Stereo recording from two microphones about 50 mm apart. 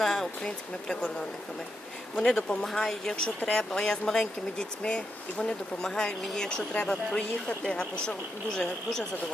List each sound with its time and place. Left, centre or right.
0.0 s a sound: centre
0.4 s speech: left
2.1 s speech: centre